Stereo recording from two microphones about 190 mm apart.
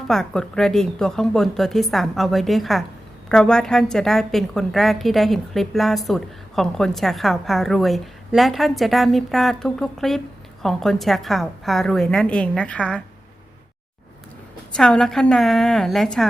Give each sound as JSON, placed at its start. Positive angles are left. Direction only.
{"t": 0.1, "sound": "a woman's voice", "side_deg": 5}
{"t": 14.7, "sound": "a woman's voice", "side_deg": 5}